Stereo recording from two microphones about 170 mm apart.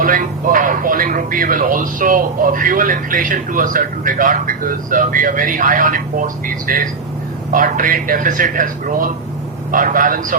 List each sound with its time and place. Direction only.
0.0 s speech: 50° right (ahead or behind)